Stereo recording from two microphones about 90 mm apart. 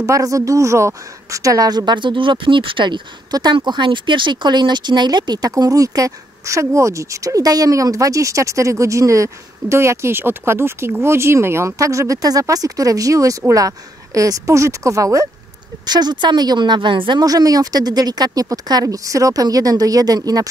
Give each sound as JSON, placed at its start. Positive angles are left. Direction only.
{"t": 0.0, "sound": "speech", "side_deg": -40}
{"t": 15.8, "sound": "a woman's voice", "side_deg": -50}
{"t": 17.2, "sound": "speech", "side_deg": -45}